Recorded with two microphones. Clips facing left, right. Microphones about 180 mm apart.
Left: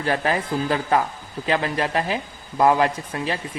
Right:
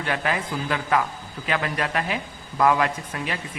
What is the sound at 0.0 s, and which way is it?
A woman's voice, 35° left (ahead or behind).